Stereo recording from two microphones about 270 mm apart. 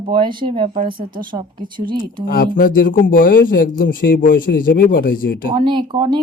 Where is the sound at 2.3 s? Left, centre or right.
Left.